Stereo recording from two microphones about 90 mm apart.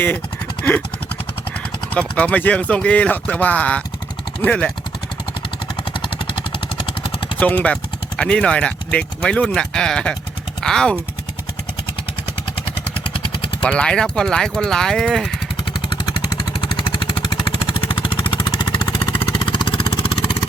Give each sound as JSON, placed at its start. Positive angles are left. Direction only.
{"t": 1.9, "sound": "speech", "side_deg": 15}
{"t": 5.9, "sound": "vehicle", "side_deg": 70}
{"t": 7.3, "sound": "speech", "side_deg": 15}
{"t": 13.1, "sound": "vehicle", "side_deg": 80}
{"t": 13.7, "sound": "speech", "side_deg": 10}
{"t": 15.7, "sound": "vehicle", "side_deg": 65}